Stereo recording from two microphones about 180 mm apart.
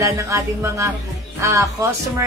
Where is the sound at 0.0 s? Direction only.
15° right (ahead or behind).